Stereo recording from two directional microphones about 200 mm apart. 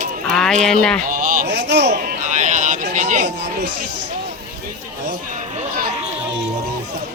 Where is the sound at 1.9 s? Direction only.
45° right (ahead or behind).